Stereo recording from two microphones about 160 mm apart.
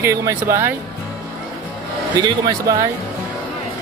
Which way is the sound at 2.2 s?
25° right (ahead or behind).